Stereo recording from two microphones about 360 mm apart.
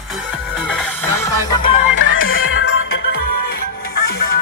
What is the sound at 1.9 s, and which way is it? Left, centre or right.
Music, left.